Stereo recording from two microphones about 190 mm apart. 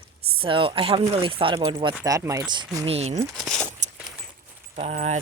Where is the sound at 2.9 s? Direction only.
35° right (ahead or behind).